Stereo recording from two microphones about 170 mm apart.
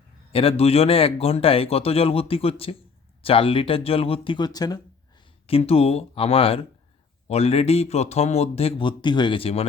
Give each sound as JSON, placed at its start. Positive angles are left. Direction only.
{"t": 0.3, "sound": "speech", "side_deg": 35}
{"t": 5.5, "sound": "speech", "side_deg": 35}